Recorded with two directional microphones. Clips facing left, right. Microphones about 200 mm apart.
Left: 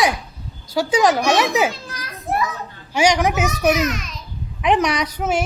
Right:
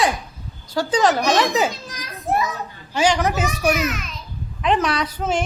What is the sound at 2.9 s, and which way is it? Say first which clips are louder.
Speech: left 2 dB; 15° left (ahead or behind).